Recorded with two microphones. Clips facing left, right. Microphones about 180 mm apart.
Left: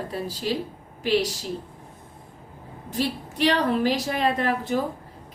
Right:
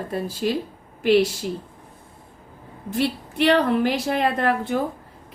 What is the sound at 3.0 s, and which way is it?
A woman's voice, 60° right (ahead or behind).